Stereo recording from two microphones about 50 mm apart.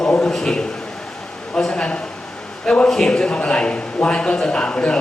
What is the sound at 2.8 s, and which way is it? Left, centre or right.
A man's voice, centre.